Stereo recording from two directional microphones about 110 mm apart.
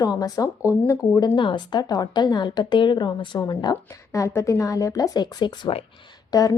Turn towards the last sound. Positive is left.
turn(degrees=35)  # may be behind; listen again after turning